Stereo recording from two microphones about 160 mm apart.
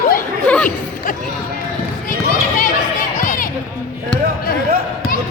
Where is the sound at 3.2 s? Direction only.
55° left (ahead or behind).